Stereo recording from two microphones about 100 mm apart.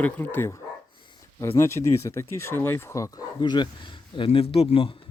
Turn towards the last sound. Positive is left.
turn(degrees=65)  # may be behind; listen again after turning